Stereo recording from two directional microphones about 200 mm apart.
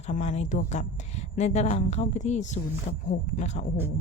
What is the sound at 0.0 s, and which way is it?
Speech, 35° left (ahead or behind).